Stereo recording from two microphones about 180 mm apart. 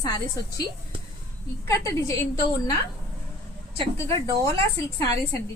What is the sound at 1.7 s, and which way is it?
Speech, 15° left (ahead or behind).